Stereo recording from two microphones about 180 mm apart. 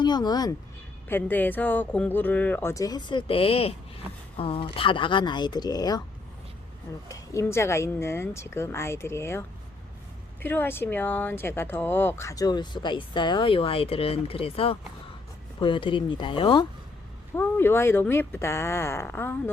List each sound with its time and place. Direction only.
0.0 s speech: 25° left (ahead or behind)
1.0 s speech: 10° left (ahead or behind)
7.1 s speech: 15° left (ahead or behind)
10.4 s speech: 10° left (ahead or behind); by 16.6 s 30° left (ahead or behind)
17.3 s speech: 10° left (ahead or behind)